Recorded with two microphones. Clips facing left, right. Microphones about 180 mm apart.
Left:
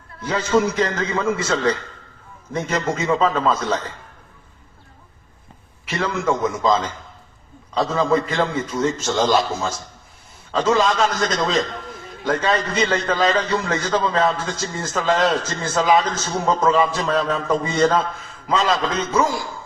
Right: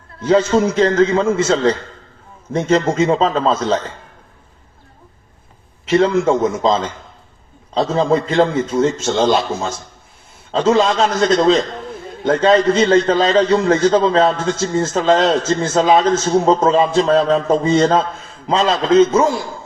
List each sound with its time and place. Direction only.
0.3 s a man's voice: 30° right (ahead or behind)
5.8 s a man's voice: 25° right (ahead or behind)
10.8 s a man's voice: 30° right (ahead or behind)